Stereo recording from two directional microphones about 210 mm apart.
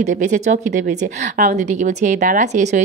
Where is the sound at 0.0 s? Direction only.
35° right (ahead or behind).